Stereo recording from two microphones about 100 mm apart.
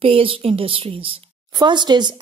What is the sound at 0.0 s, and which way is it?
A woman's voice, 65° right (ahead or behind).